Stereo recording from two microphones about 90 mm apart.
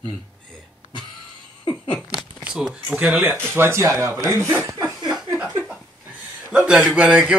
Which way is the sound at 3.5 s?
30° right (ahead or behind).